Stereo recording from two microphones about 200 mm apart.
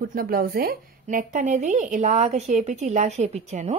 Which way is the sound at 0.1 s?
45° right (ahead or behind).